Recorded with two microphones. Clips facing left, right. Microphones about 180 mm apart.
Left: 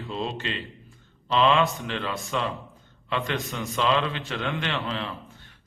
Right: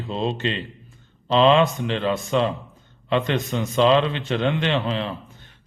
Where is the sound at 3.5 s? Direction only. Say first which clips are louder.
Right 8 dB; 20° right (ahead or behind).